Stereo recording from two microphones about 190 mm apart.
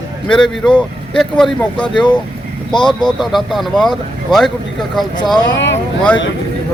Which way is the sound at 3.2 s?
Centre (ahead or behind).